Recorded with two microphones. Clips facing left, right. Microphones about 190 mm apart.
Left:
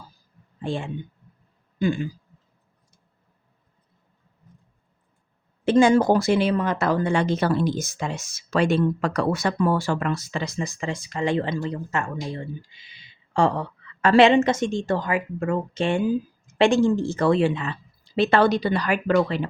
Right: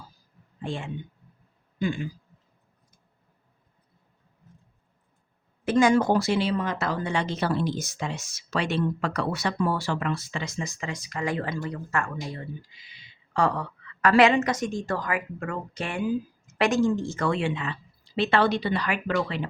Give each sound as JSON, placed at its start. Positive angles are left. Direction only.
{"t": 0.6, "sound": "speech", "side_deg": 35}
{"t": 5.6, "sound": "speech", "side_deg": 30}